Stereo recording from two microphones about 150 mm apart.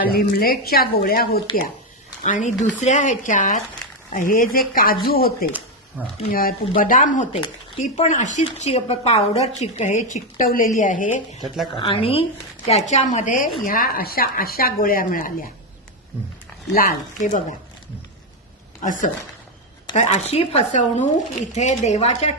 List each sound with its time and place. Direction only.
0.0 s speech: 90° left
2.2 s speech: 55° left (ahead or behind); by 4.9 s 70° left (ahead or behind)
5.0 s speech: 85° left
5.5 s a sound: 10° right (ahead or behind)
6.2 s a woman's voice: 70° left (ahead or behind)
11.8 s speech: 35° left (ahead or behind)
12.6 s a woman's voice: 45° left (ahead or behind)
13.7 s speech: 70° left (ahead or behind)
16.7 s speech: 65° left (ahead or behind)
18.8 s speech: 60° left (ahead or behind)
20.0 s a woman's voice: 45° left (ahead or behind)